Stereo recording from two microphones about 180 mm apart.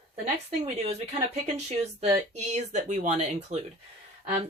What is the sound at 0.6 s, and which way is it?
Speech, 35° right (ahead or behind).